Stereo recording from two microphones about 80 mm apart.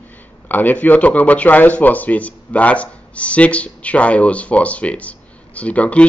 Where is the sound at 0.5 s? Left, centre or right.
Left.